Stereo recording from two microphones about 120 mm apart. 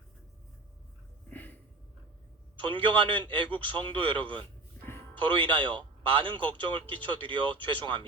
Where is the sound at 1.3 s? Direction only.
15° left (ahead or behind).